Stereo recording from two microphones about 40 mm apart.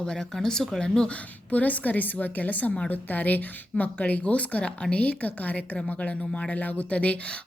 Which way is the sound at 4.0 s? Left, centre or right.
Left.